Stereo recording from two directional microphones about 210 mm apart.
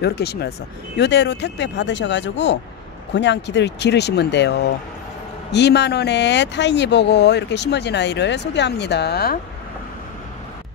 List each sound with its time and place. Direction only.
0.0 s speech: 50° left (ahead or behind)